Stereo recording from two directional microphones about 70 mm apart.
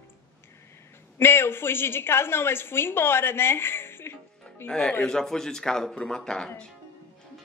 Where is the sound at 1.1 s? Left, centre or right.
Left.